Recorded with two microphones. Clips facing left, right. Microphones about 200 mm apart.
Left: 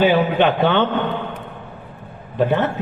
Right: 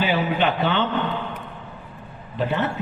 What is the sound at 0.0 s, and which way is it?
Speech, 55° left (ahead or behind).